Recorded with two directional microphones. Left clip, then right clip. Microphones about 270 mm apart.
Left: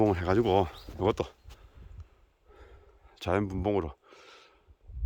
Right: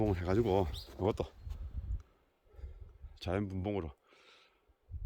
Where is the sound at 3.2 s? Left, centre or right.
Centre.